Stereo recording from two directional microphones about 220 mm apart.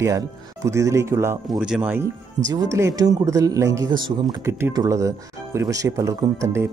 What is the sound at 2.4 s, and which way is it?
Speech, 15° right (ahead or behind).